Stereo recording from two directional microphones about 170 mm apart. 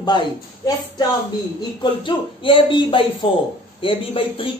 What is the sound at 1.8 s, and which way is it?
A woman's voice, 30° left (ahead or behind).